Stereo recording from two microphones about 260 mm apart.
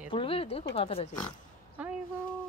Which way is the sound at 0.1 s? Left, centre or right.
Centre.